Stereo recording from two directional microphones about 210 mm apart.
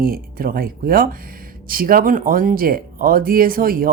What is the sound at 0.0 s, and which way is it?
Speech, 45° right (ahead or behind).